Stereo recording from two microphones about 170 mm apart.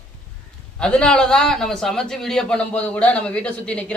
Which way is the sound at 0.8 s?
5° left (ahead or behind).